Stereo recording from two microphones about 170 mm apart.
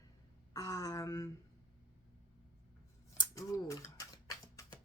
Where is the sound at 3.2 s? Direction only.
20° left (ahead or behind).